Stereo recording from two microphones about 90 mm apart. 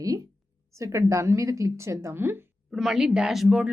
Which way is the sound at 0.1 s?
45° right (ahead or behind).